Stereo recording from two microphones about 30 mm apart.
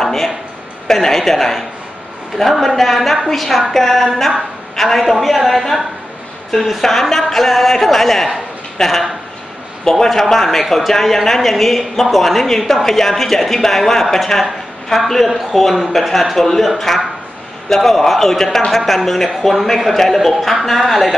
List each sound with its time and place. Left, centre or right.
0.0 s a sound: centre
0.8 s a man's voice: centre
2.6 s a man's voice: centre
14.4 s a man's voice: centre